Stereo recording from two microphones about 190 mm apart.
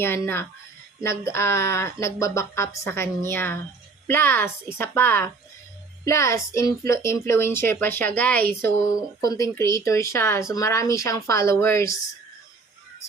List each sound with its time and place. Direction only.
0.0 s a woman's voice: 10° left (ahead or behind)